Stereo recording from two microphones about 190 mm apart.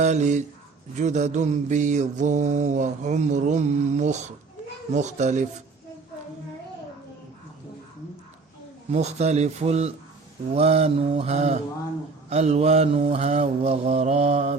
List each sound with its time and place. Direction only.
0.0 s mantra: 40° right (ahead or behind)
8.9 s mantra: 35° right (ahead or behind)